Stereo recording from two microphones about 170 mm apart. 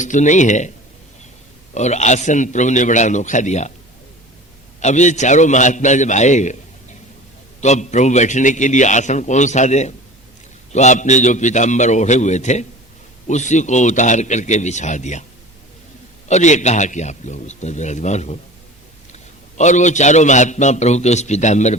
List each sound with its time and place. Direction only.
0.0 s a man's voice: 45° left (ahead or behind)
1.7 s a man's voice: 40° left (ahead or behind)
4.8 s a man's voice: 45° left (ahead or behind)
7.6 s a man's voice: 45° left (ahead or behind)
16.3 s a man's voice: 45° left (ahead or behind)